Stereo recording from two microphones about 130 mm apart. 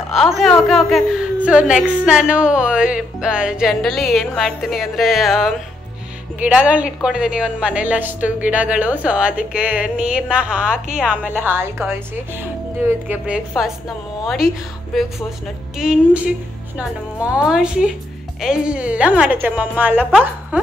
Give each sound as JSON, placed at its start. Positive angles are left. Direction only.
{"t": 0.1, "sound": "a woman's voice", "side_deg": 0}
{"t": 3.8, "sound": "music", "side_deg": 0}
{"t": 6.4, "sound": "a woman's voice", "side_deg": -10}
{"t": 14.2, "sound": "music", "side_deg": -5}
{"t": 15.8, "sound": "a woman's voice", "side_deg": -5}